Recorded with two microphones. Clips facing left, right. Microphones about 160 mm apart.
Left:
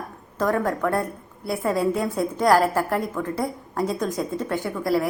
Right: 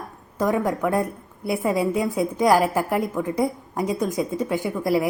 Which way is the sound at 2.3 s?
10° right (ahead or behind).